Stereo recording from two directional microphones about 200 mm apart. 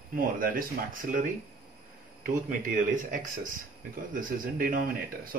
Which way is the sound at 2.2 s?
40° right (ahead or behind).